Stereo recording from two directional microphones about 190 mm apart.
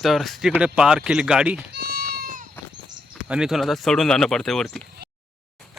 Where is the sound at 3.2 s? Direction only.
5° right (ahead or behind).